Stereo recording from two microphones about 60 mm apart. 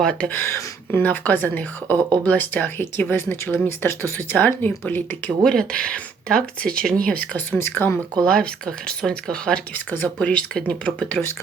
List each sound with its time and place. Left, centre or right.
0.0 s speech: centre
0.4 s speech: left
4.4 s speech: left
5.4 s speech: centre
7.1 s speech: left
7.6 s speech: left
8.1 s speech: centre